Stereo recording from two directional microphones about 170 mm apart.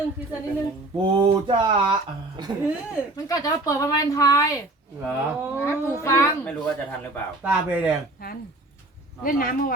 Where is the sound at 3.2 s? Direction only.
20° left (ahead or behind).